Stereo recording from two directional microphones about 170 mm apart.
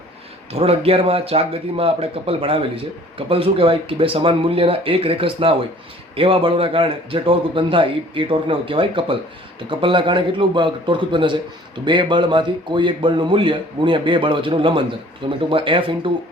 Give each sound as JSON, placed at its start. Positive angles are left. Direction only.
{"t": 0.5, "sound": "a man's voice", "side_deg": -35}